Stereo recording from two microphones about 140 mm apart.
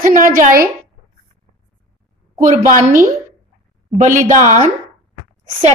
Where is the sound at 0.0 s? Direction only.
75° right (ahead or behind); by 0.7 s 90° right.